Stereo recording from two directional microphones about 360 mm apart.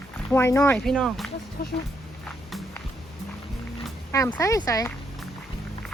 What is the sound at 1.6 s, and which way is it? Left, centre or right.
Speech, left.